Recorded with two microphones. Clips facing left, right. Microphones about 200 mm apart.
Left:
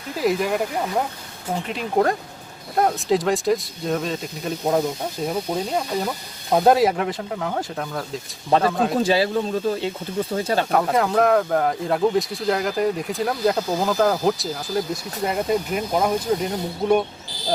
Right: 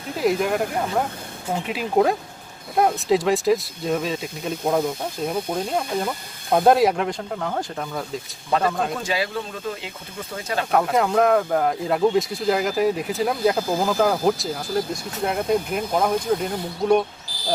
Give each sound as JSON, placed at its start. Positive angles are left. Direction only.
{"t": 0.2, "sound": "speech", "side_deg": 0}
{"t": 9.0, "sound": "speech", "side_deg": 30}
{"t": 10.7, "sound": "speech", "side_deg": 0}